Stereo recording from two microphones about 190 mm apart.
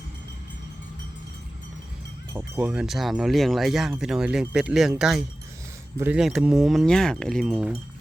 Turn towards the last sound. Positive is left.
turn(degrees=0)  # may be behind; listen again after turning